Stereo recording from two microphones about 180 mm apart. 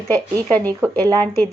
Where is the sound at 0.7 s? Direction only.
15° right (ahead or behind).